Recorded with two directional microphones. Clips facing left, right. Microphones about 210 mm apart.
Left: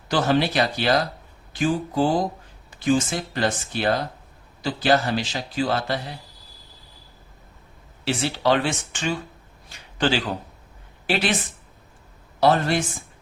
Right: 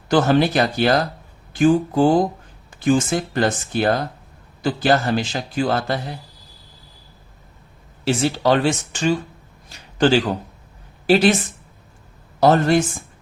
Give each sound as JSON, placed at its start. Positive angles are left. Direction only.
{"t": 0.1, "sound": "a man's voice", "side_deg": -50}
{"t": 8.0, "sound": "speech", "side_deg": -45}
{"t": 9.6, "sound": "a sound", "side_deg": -45}
{"t": 11.0, "sound": "speech", "side_deg": -40}
{"t": 12.4, "sound": "a man's voice", "side_deg": -45}